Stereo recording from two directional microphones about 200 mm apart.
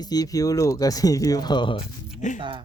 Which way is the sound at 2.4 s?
25° right (ahead or behind).